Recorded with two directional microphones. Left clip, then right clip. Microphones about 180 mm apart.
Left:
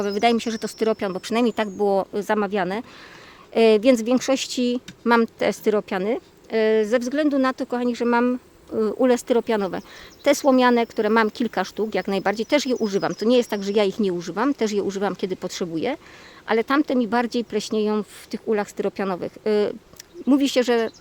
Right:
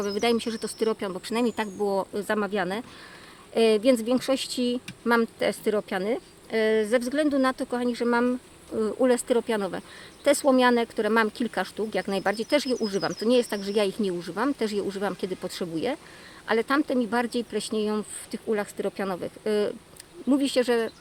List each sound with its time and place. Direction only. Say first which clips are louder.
0.0 s speech: left 5 dB; 50° left (ahead or behind)